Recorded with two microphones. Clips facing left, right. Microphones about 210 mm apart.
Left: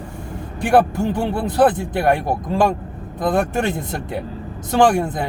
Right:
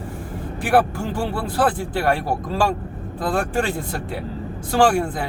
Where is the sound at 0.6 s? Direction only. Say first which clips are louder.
Left 3 dB; 25° left (ahead or behind).